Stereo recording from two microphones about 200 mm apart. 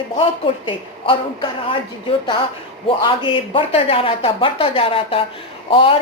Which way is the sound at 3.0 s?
25° left (ahead or behind).